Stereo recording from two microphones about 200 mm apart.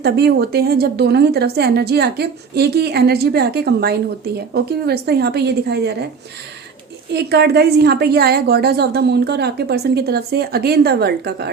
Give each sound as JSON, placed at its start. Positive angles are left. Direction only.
{"t": 0.0, "sound": "a woman's voice", "side_deg": -55}
{"t": 7.1, "sound": "a woman's voice", "side_deg": -55}